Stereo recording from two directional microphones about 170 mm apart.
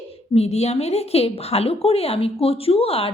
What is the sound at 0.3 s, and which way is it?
A woman's voice, 40° left (ahead or behind).